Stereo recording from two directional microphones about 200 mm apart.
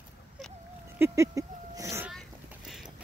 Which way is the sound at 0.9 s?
15° right (ahead or behind).